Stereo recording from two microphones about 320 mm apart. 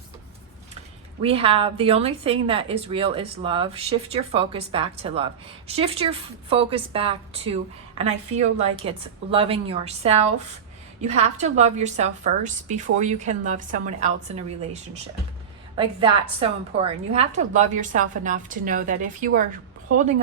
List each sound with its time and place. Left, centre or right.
1.2 s a woman's voice: centre